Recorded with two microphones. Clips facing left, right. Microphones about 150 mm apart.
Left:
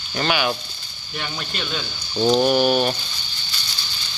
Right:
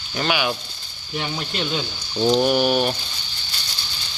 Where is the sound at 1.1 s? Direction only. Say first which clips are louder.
Right 4 dB; 20° right (ahead or behind).